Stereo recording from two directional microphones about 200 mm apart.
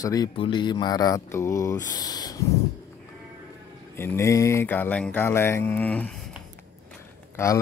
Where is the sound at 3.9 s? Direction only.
10° left (ahead or behind).